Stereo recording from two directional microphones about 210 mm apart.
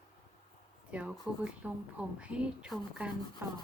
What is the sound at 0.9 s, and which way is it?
A woman's voice, 5° right (ahead or behind).